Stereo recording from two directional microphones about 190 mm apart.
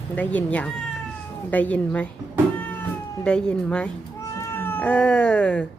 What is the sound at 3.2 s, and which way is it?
Speech, 5° left (ahead or behind).